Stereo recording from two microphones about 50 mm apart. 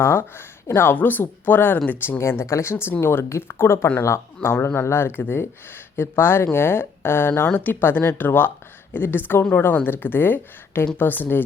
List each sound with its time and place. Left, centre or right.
0.0 s speech: left
0.9 s speech: left
2.1 s speech: left